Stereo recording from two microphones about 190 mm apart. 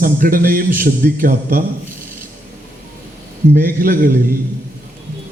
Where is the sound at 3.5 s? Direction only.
45° right (ahead or behind).